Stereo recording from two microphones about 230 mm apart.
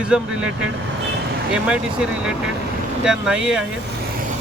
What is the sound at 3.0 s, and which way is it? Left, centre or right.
Speech, centre.